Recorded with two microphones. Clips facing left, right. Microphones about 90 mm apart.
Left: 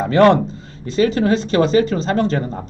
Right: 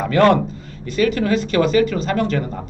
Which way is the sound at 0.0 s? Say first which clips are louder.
Left 2 dB; 25° left (ahead or behind).